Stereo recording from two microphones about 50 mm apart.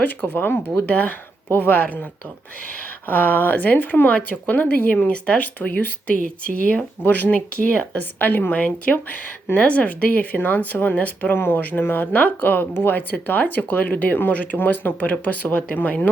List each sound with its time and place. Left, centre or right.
0.0 s speech: left
0.9 s speech: left
1.5 s speech: left
1.7 s speech: left
3.1 s speech: left